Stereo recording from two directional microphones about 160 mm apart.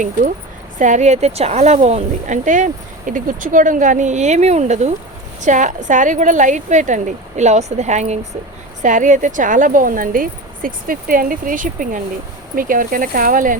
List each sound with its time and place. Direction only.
0.8 s speech: 50° right (ahead or behind)